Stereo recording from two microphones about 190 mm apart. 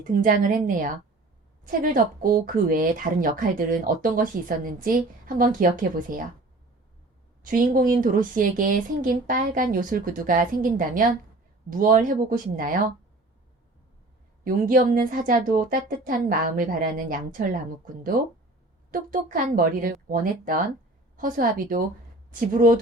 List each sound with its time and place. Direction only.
0.2 s speech: 45° right (ahead or behind)
7.4 s speech: 45° right (ahead or behind)
14.4 s speech: 45° right (ahead or behind)
18.9 s speech: 45° right (ahead or behind)